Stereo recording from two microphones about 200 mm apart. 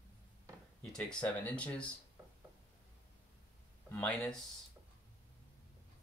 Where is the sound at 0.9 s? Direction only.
5° left (ahead or behind).